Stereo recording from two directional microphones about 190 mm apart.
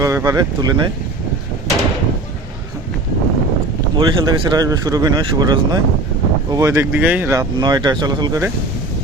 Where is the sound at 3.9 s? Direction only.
20° right (ahead or behind).